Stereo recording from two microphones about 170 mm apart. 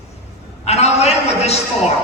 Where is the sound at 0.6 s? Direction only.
40° left (ahead or behind).